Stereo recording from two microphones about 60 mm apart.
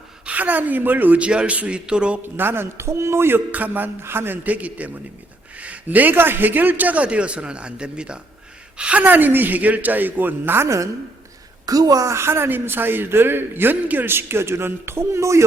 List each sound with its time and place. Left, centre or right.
0.3 s a man's voice: right
2.2 s a woman's voice: right
3.5 s a man's voice: right
4.0 s a woman's voice: right
11.6 s a woman's voice: right